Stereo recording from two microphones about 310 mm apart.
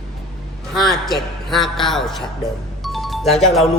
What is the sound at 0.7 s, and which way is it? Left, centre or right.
Speech, centre.